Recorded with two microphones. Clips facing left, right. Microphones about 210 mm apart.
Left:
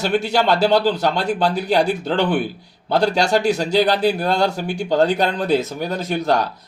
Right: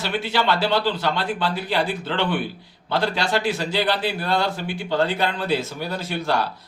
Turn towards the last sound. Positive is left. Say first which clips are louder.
# left 5 dB
turn(degrees=45)  # may be behind; listen again after turning